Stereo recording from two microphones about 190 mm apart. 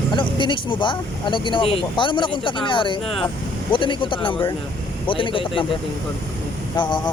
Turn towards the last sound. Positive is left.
turn(degrees=25)  # may be behind; listen again after turning